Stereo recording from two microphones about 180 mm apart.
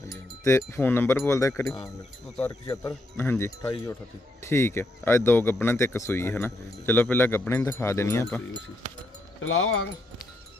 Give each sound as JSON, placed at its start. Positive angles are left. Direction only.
{"t": 0.4, "sound": "speech", "side_deg": 15}
{"t": 9.4, "sound": "speech", "side_deg": 90}